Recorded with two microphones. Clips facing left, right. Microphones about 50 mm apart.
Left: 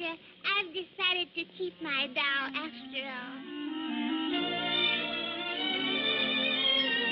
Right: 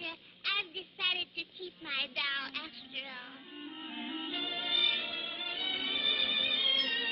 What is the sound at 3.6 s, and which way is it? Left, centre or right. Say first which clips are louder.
Music: left 9 dB; left.